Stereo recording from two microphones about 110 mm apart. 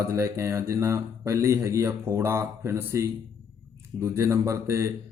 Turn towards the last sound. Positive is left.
turn(degrees=-25)  # may be behind; listen again after turning